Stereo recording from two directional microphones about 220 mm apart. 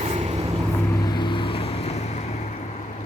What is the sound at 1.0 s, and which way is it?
Vehicle, 20° left (ahead or behind).